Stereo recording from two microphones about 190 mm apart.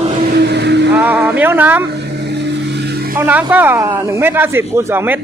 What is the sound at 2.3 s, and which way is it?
Vehicle, 65° right (ahead or behind).